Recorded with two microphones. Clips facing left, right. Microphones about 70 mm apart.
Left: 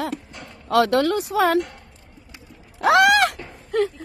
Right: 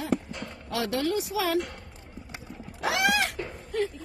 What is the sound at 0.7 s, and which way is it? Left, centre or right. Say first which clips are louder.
Speech: left 10 dB; left.